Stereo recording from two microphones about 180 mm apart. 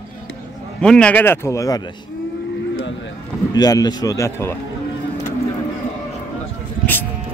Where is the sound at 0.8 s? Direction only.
5° left (ahead or behind).